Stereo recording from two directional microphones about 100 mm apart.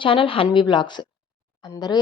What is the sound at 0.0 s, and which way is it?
A woman's voice, 60° left (ahead or behind).